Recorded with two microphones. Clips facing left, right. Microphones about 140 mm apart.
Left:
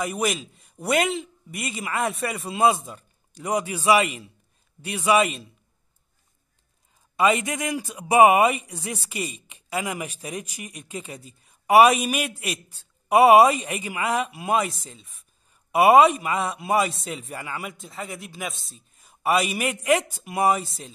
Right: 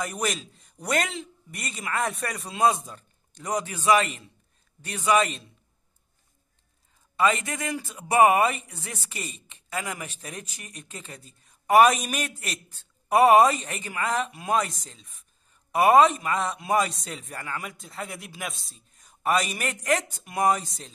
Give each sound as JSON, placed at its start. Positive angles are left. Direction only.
{"t": 0.0, "sound": "a man's voice", "side_deg": 10}
{"t": 7.2, "sound": "a man's voice", "side_deg": 10}